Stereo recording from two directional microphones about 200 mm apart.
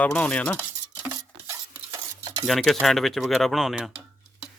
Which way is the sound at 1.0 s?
15° right (ahead or behind).